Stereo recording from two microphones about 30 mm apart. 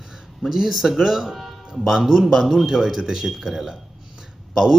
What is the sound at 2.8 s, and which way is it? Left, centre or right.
Speech, centre.